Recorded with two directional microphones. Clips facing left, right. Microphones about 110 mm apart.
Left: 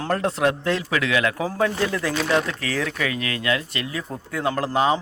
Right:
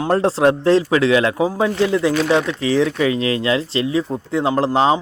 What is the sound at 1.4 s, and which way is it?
A man's voice, 20° right (ahead or behind).